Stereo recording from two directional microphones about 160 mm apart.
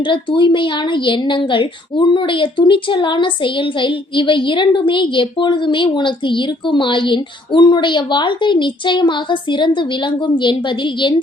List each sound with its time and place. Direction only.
0.0 s a woman's voice: 30° left (ahead or behind)